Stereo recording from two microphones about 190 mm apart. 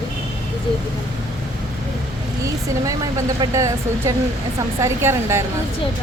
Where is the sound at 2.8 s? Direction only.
15° right (ahead or behind).